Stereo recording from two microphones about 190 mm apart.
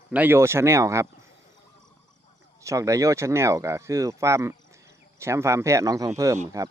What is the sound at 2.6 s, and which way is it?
Speech, 15° right (ahead or behind).